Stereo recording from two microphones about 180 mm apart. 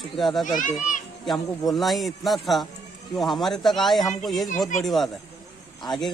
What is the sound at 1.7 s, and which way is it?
Speech, centre (ahead or behind).